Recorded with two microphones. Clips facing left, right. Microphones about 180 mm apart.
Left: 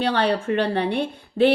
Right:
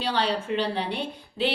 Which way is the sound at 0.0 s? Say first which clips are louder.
Left 5 dB; 60° left (ahead or behind).